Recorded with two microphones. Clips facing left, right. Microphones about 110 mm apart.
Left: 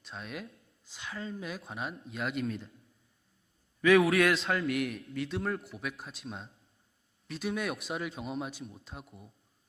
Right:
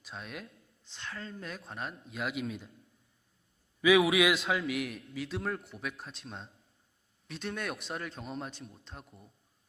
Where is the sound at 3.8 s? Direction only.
5° right (ahead or behind).